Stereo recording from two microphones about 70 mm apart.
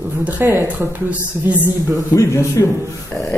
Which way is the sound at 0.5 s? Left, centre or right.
Right.